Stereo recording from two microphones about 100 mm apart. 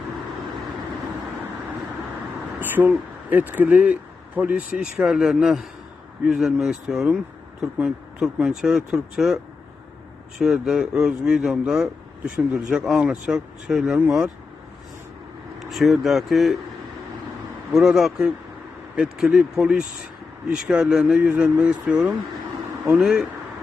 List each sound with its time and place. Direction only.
2.6 s a sound: 20° right (ahead or behind)
3.2 s speech: 15° right (ahead or behind)
15.5 s speech: centre (ahead or behind)
17.7 s speech: 5° right (ahead or behind)